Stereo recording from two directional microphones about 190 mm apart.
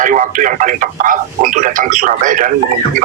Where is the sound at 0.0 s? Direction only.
45° right (ahead or behind).